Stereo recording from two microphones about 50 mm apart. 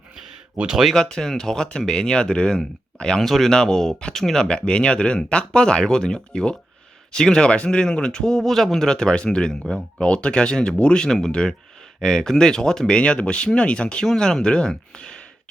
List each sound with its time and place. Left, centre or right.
0.5 s speech: right
0.9 s a man's voice: centre
3.2 s a man's voice: centre
4.4 s a man's voice: centre
13.0 s a man's voice: left